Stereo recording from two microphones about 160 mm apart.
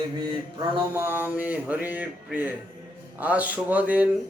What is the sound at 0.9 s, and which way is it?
Speech, 10° right (ahead or behind).